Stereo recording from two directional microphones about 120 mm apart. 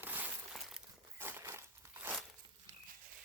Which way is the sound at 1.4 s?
25° right (ahead or behind).